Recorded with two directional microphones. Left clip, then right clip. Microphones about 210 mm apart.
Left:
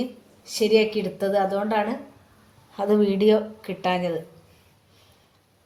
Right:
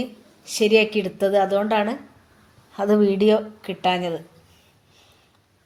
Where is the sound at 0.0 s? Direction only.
40° right (ahead or behind).